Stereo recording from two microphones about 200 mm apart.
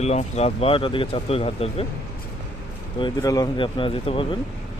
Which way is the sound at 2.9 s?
20° left (ahead or behind).